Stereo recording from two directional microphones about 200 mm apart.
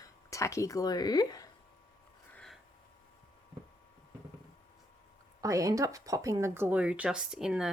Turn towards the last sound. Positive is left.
turn(degrees=-5)  # may be behind; listen again after turning